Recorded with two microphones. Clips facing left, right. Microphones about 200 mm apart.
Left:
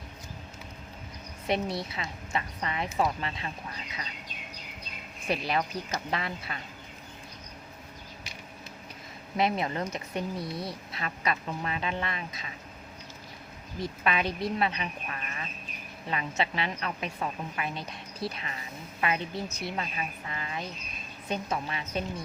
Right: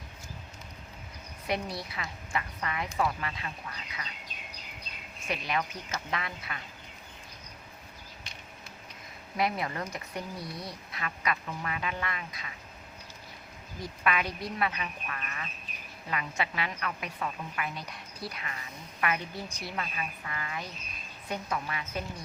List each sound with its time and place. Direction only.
1.5 s speech: 25° left (ahead or behind)
5.3 s a woman's voice: 35° left (ahead or behind)
9.4 s speech: 25° left (ahead or behind)
13.8 s speech: 25° left (ahead or behind)